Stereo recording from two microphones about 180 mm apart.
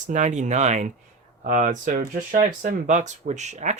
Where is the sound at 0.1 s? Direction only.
45° right (ahead or behind).